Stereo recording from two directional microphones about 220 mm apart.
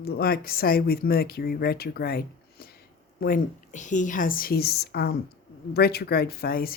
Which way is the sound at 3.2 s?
35° left (ahead or behind).